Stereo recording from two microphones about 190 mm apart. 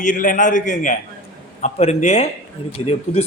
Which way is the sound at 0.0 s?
45° left (ahead or behind).